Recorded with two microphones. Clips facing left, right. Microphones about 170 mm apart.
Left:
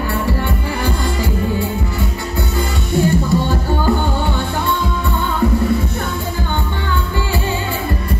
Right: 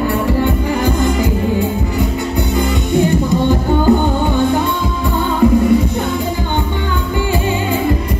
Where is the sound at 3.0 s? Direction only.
20° right (ahead or behind).